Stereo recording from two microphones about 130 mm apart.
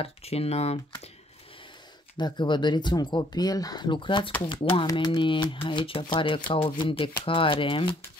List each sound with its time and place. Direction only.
0.0 s speech: 50° left (ahead or behind)
2.1 s speech: 35° left (ahead or behind)